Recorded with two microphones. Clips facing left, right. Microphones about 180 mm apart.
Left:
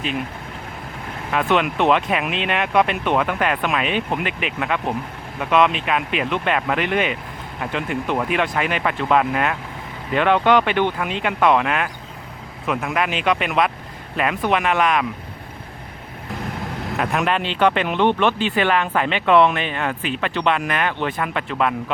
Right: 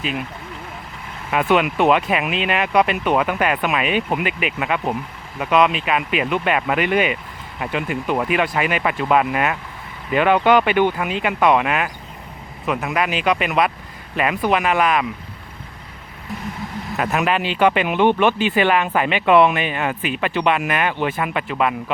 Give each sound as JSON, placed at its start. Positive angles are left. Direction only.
{"t": 1.3, "sound": "speech", "side_deg": 0}
{"t": 16.8, "sound": "speech", "side_deg": 0}